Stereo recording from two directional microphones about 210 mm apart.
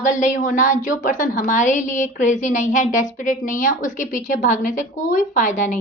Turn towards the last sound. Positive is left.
turn(degrees=35)  # may be behind; listen again after turning